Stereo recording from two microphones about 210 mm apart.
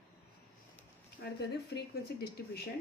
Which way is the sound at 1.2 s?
50° left (ahead or behind).